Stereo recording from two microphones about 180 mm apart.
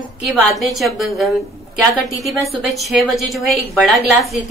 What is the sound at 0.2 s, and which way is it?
A woman's voice, centre (ahead or behind).